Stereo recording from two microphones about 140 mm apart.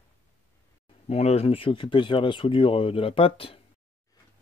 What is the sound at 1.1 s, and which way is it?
Speech, 45° left (ahead or behind).